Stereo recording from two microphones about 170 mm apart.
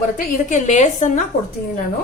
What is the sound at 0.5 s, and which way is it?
Speech, 45° left (ahead or behind).